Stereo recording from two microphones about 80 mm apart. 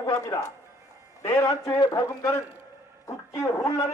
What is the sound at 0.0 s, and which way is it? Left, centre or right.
A man's voice, left.